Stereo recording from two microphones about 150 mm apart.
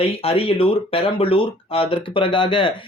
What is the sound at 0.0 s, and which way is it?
Speech, 40° left (ahead or behind).